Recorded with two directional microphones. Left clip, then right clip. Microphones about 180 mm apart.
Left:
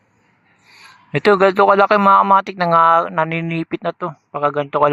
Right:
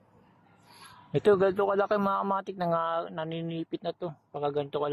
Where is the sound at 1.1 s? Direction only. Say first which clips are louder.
Left 11 dB; 20° left (ahead or behind).